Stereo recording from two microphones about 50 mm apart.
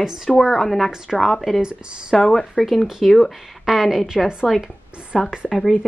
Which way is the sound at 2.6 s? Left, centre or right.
Centre.